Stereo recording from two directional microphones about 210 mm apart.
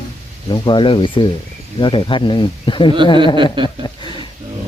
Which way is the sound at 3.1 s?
20° right (ahead or behind).